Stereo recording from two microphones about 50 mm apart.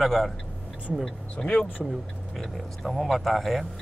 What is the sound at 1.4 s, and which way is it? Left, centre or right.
Speech, centre.